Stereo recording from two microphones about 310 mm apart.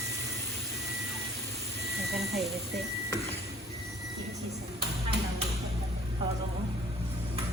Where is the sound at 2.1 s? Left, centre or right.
Centre.